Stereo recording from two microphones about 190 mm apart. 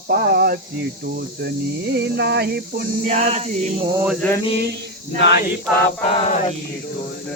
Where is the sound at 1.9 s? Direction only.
60° right (ahead or behind).